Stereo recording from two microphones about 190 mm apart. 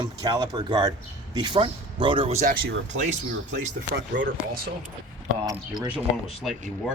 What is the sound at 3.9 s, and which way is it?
Speech, 65° right (ahead or behind).